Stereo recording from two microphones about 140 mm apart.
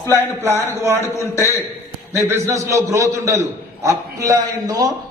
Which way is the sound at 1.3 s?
20° left (ahead or behind).